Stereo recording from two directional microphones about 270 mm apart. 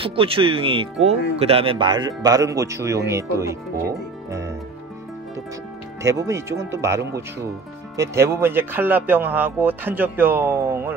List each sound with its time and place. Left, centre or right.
0.0 s speech: centre
6.0 s speech: centre